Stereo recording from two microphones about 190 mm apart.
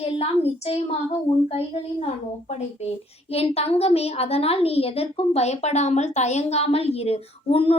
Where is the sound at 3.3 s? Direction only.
35° left (ahead or behind).